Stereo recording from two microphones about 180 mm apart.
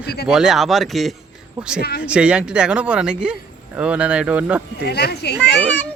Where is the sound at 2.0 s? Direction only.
5° right (ahead or behind).